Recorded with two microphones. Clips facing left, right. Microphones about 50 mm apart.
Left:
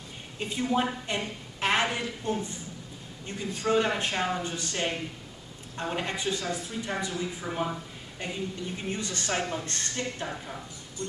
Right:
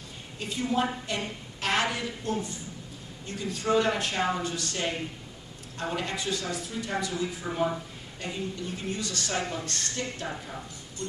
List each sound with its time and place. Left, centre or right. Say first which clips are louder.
0.4 s a woman's voice: even; left
8.9 s speech: left 1 dB; left